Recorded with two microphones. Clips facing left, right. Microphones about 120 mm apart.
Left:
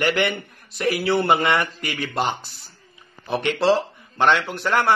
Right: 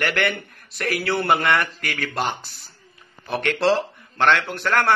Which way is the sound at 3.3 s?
15° left (ahead or behind).